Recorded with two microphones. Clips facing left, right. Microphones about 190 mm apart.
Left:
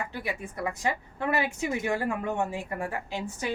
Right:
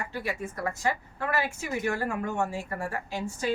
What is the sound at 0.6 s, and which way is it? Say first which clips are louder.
A woman's voice: even; 15° left (ahead or behind).